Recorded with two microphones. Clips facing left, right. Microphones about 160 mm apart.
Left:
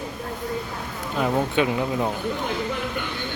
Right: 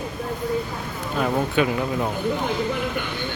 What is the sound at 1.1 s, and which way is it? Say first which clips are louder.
Speech: even; 20° left (ahead or behind).